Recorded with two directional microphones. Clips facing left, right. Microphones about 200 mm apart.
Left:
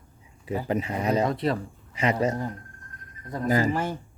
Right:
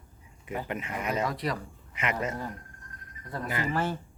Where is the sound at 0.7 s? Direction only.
35° left (ahead or behind).